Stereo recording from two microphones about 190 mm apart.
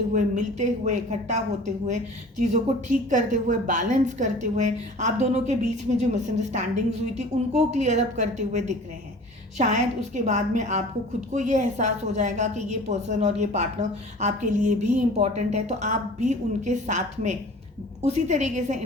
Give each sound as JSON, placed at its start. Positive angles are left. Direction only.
{"t": 0.1, "sound": "a woman's voice", "side_deg": -40}